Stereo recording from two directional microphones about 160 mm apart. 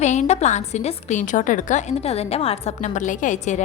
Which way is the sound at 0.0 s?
45° left (ahead or behind).